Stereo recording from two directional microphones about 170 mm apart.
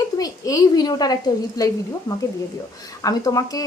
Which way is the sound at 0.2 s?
20° left (ahead or behind).